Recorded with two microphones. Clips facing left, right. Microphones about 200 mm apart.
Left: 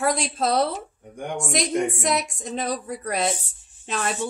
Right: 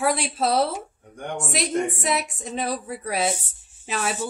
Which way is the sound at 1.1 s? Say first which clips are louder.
Left 1 dB; 10° left (ahead or behind).